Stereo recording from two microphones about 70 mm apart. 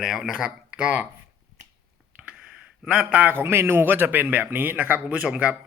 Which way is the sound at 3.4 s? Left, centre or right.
Right.